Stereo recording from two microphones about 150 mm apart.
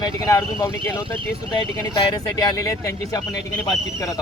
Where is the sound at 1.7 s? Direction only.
25° left (ahead or behind).